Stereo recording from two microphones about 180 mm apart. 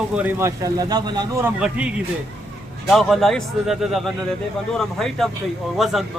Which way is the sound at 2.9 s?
Centre (ahead or behind).